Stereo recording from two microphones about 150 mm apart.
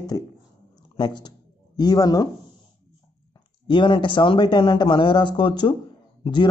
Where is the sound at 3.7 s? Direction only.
35° left (ahead or behind).